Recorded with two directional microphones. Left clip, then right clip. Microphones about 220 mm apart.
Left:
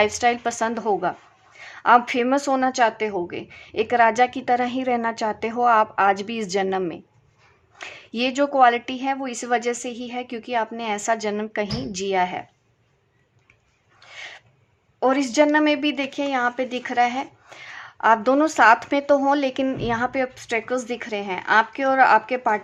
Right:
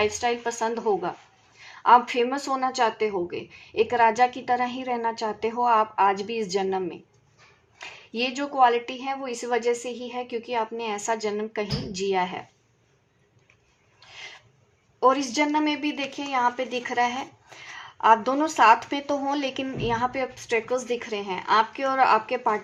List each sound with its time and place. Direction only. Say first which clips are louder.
0.0 s a woman's voice: left 5 dB; 35° left (ahead or behind)
14.0 s a sound: left 4 dB; 35° left (ahead or behind)
15.0 s a woman's voice: left 3 dB; 35° left (ahead or behind)